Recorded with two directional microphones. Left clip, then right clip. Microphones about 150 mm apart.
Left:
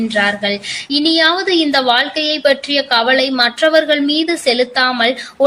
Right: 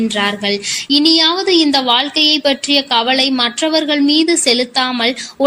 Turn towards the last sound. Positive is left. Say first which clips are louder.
# left 2 dB
turn(degrees=-40)  # may be behind; listen again after turning